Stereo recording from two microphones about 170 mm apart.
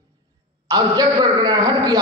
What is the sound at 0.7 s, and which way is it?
A man's voice, 20° right (ahead or behind).